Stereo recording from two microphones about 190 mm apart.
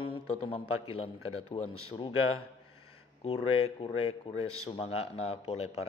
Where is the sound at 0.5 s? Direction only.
30° left (ahead or behind).